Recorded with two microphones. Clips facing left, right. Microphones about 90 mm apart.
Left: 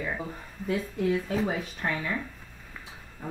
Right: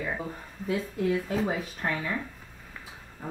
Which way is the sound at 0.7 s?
Centre (ahead or behind).